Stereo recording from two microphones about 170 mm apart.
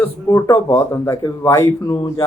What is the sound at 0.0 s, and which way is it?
Speech, 15° left (ahead or behind).